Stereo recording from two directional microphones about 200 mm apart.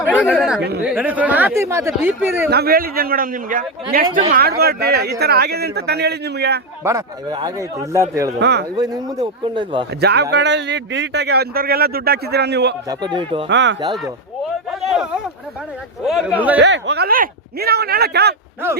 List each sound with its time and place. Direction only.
0.1 s a man's voice: centre (ahead or behind)
2.5 s speech: 50° right (ahead or behind)
6.8 s a man's voice: 20° right (ahead or behind)
8.4 s a man's voice: 60° right (ahead or behind)
8.7 s speech: 20° right (ahead or behind)
10.0 s a man's voice: 55° right (ahead or behind)
12.9 s speech: 20° right (ahead or behind)
13.5 s a man's voice: 65° right (ahead or behind)
14.7 s a man's voice: centre (ahead or behind)
16.6 s speech: 65° right (ahead or behind)